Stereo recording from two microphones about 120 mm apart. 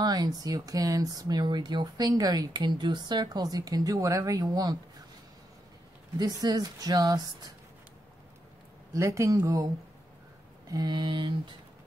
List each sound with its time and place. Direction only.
0.0 s speech: 35° right (ahead or behind)
6.1 s speech: 35° right (ahead or behind)
8.9 s speech: 25° right (ahead or behind)
10.7 s speech: 35° right (ahead or behind)